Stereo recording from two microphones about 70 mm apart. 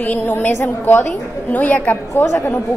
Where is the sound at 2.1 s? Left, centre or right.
Left.